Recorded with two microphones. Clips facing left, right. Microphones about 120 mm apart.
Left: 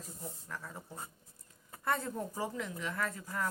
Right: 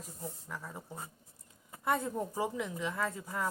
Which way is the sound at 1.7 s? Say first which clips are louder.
Right 2 dB; 15° right (ahead or behind).